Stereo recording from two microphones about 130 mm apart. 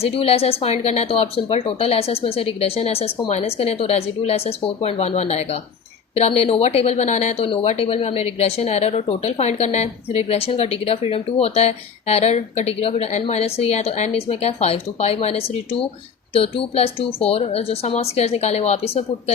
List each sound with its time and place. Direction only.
0.0 s a woman's voice: 50° left (ahead or behind)